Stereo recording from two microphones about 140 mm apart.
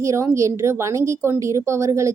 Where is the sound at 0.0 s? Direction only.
20° right (ahead or behind).